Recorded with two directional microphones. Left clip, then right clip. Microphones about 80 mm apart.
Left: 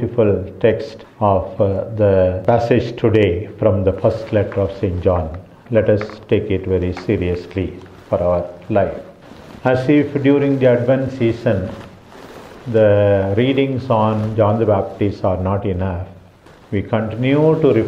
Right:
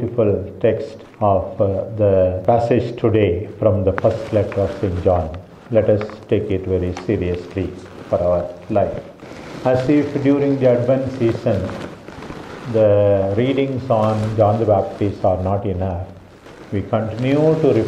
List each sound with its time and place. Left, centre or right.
0.1 s speech: left
12.7 s speech: left